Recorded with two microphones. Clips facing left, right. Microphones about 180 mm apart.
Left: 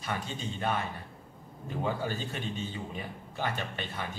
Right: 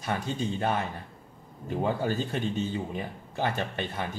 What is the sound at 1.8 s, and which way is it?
Speech, 45° right (ahead or behind).